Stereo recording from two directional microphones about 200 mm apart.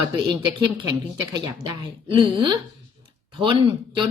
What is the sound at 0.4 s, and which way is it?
A woman's voice, 25° right (ahead or behind).